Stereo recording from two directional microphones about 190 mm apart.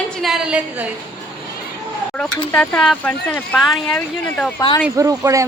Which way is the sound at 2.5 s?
5° left (ahead or behind).